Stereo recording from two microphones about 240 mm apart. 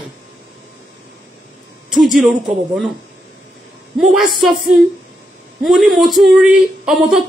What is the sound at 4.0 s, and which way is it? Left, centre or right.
Speech, centre.